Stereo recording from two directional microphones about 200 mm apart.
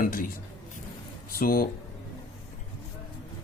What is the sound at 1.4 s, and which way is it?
Speech, 45° left (ahead or behind).